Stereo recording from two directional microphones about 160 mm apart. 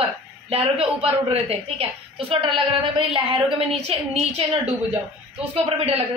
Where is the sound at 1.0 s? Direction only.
40° right (ahead or behind).